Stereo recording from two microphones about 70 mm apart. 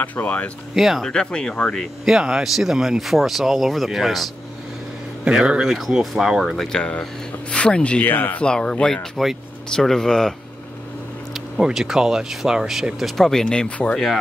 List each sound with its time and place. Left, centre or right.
0.0 s speech: left
0.7 s speech: centre
1.0 s speech: centre
2.0 s speech: centre
5.2 s speech: centre
6.8 s speech: centre
8.0 s speech: left
8.5 s speech: centre
11.3 s speech: centre